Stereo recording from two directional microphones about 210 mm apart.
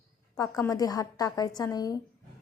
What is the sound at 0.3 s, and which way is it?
A woman's voice, 15° left (ahead or behind).